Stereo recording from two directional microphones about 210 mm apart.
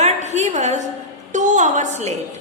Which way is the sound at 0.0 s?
35° right (ahead or behind).